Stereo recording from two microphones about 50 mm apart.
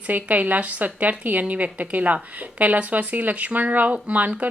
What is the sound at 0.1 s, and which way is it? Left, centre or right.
A woman's voice, right.